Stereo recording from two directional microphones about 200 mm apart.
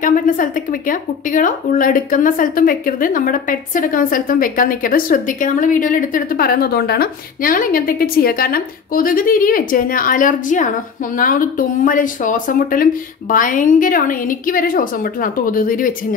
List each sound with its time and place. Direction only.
0.0 s speech: 40° left (ahead or behind)